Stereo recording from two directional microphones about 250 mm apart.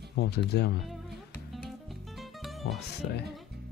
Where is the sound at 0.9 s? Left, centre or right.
Centre.